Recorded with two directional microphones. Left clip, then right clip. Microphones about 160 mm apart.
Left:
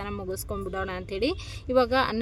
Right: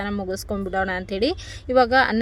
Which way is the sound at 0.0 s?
20° right (ahead or behind).